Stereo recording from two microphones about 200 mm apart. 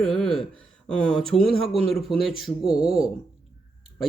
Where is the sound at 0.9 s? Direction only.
5° left (ahead or behind).